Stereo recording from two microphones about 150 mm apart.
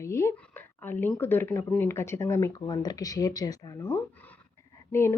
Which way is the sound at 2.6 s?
30° left (ahead or behind).